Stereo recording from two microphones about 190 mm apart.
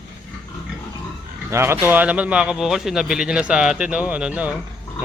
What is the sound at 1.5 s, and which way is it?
A man's voice, 10° right (ahead or behind).